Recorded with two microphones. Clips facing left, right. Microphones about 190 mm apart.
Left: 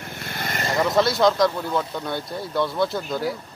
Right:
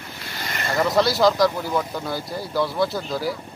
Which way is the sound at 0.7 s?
Centre (ahead or behind).